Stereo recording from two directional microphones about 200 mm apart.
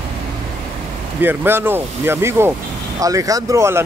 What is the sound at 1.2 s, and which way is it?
Speech, 10° right (ahead or behind).